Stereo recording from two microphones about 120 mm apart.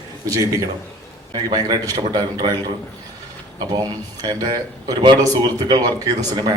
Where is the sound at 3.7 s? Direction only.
30° right (ahead or behind).